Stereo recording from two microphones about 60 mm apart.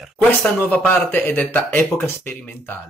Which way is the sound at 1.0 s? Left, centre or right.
Left.